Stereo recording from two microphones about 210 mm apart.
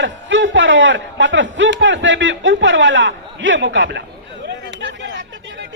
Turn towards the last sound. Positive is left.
turn(degrees=-55)  # may be behind; listen again after turning